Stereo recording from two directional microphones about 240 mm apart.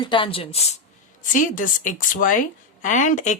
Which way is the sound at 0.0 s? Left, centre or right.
Left.